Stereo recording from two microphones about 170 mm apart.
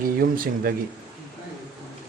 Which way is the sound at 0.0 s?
60° right (ahead or behind).